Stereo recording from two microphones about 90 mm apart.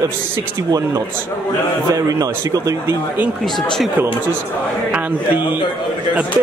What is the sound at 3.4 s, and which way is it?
Speech, 5° left (ahead or behind).